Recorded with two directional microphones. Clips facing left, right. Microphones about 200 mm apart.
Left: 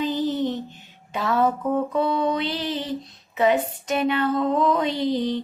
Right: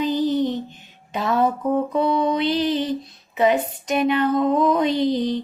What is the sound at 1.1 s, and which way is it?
Music, 20° right (ahead or behind).